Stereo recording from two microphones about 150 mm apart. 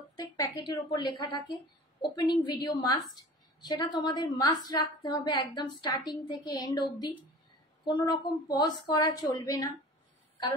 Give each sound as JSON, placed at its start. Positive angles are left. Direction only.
{"t": 0.4, "sound": "a woman's voice", "side_deg": 30}